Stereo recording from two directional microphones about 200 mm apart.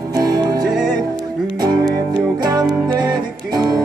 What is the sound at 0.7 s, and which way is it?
Music, 5° right (ahead or behind).